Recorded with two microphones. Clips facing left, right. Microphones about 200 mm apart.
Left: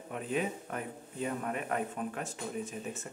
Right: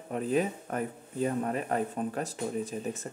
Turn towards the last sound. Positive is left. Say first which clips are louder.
# right 5 dB
turn(degrees=-35)  # may be behind; listen again after turning